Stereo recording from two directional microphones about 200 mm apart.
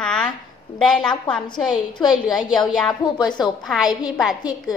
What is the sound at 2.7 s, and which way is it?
Speech, centre (ahead or behind).